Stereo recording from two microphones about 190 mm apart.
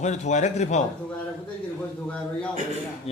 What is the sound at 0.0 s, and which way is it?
Speech, 40° left (ahead or behind).